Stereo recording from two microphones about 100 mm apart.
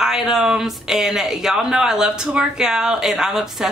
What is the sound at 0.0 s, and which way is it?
A woman's voice, 5° right (ahead or behind).